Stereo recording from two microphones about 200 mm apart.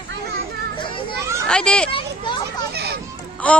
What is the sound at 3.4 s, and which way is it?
Speech, 5° left (ahead or behind).